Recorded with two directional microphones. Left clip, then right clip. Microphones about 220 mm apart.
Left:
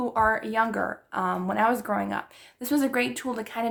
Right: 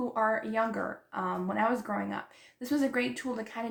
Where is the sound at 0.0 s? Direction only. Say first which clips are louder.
Left 6 dB; 45° left (ahead or behind).